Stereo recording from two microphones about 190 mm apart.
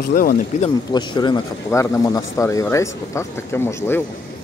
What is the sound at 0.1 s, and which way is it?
Speech, 50° left (ahead or behind).